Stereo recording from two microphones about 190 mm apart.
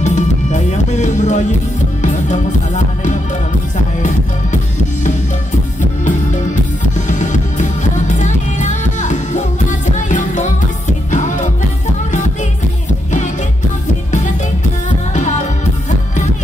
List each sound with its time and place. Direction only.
0.0 s music: 40° left (ahead or behind)
5.8 s music: 40° left (ahead or behind)